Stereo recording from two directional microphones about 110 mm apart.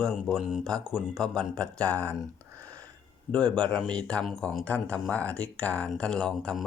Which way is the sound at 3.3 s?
10° left (ahead or behind).